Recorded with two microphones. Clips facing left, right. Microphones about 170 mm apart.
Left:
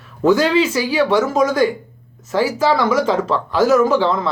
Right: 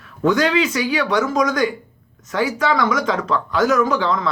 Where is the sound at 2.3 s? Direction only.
30° left (ahead or behind).